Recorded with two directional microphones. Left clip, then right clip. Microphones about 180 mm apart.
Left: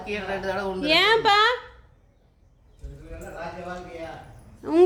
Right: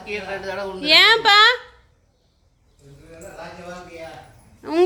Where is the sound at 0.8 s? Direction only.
Centre (ahead or behind).